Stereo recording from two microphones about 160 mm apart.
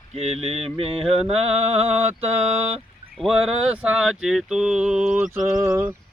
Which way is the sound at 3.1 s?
5° right (ahead or behind).